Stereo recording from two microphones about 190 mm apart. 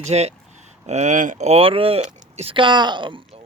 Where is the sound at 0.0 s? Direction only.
35° right (ahead or behind).